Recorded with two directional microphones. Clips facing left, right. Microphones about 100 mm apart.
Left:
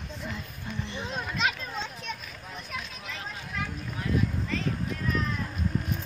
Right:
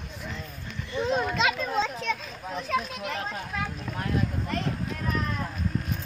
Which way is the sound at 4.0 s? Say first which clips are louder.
Even; 55° right (ahead or behind).